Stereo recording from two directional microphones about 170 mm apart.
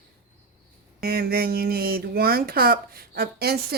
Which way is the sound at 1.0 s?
65° right (ahead or behind).